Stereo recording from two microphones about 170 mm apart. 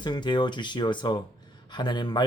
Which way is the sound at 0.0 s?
25° left (ahead or behind).